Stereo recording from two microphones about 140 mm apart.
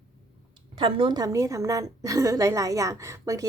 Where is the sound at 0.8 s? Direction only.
35° right (ahead or behind).